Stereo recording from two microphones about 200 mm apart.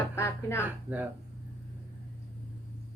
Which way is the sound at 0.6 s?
10° right (ahead or behind).